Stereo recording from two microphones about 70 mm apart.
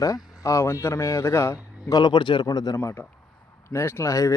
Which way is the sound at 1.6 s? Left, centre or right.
Centre.